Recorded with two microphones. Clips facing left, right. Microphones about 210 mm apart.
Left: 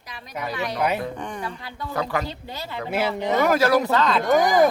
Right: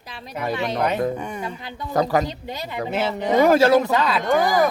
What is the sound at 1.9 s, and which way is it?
Speech, 40° right (ahead or behind).